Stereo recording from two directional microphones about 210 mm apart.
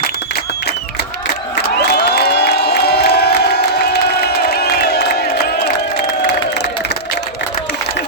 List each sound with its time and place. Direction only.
1.8 s crowd: 50° left (ahead or behind)